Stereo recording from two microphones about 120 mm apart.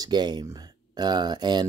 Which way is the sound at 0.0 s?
35° right (ahead or behind).